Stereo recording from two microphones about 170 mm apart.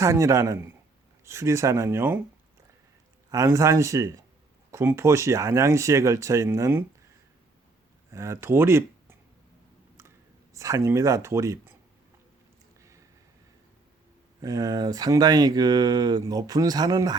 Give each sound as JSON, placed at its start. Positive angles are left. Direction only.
{"t": 0.0, "sound": "speech", "side_deg": -15}
{"t": 3.3, "sound": "speech", "side_deg": -20}
{"t": 8.1, "sound": "speech", "side_deg": -15}
{"t": 10.5, "sound": "speech", "side_deg": -15}
{"t": 12.8, "sound": "a sound", "side_deg": -20}
{"t": 14.4, "sound": "speech", "side_deg": -20}